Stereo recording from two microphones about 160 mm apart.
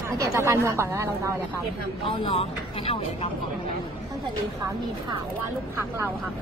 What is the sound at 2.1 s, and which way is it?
Speech, 35° left (ahead or behind).